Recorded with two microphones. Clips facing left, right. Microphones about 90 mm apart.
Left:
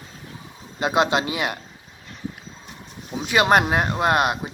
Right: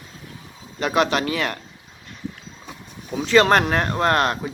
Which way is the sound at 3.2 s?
15° left (ahead or behind).